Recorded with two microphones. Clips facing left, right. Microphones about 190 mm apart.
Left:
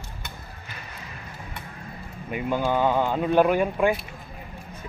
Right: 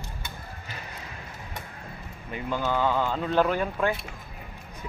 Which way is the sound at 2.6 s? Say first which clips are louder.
Left 2 dB; 20° left (ahead or behind).